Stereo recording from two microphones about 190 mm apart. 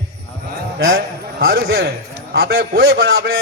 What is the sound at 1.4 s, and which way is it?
A man's voice, 55° right (ahead or behind).